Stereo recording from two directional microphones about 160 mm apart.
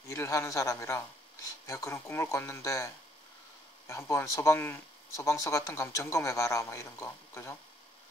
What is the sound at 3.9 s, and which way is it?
Speech, 15° left (ahead or behind).